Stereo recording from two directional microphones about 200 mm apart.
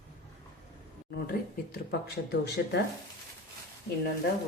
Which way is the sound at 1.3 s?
50° left (ahead or behind).